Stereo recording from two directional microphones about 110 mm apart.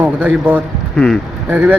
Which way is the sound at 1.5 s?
15° right (ahead or behind).